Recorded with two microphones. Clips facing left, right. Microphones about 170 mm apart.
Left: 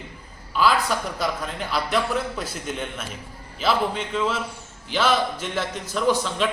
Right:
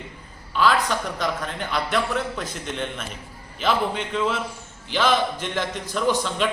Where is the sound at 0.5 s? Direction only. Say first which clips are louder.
Even; 5° left (ahead or behind).